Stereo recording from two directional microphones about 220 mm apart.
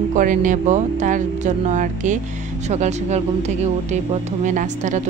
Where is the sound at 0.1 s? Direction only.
35° right (ahead or behind).